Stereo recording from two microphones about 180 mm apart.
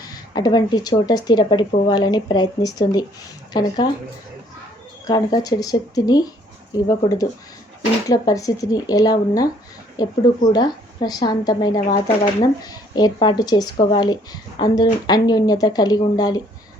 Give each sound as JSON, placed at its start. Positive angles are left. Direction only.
{"t": 0.0, "sound": "speech", "side_deg": 20}
{"t": 5.0, "sound": "speech", "side_deg": 20}